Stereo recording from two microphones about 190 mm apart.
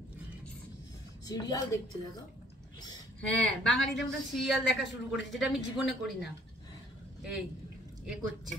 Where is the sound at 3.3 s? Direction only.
5° left (ahead or behind).